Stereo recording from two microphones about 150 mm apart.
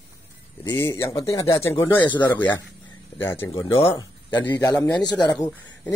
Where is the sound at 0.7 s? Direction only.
15° left (ahead or behind).